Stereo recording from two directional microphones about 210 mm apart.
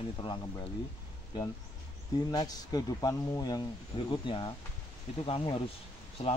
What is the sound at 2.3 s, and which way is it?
Speech, 20° left (ahead or behind).